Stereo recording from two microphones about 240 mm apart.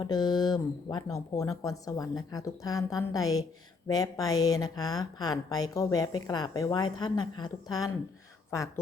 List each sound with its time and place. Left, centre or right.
0.0 s a woman's voice: centre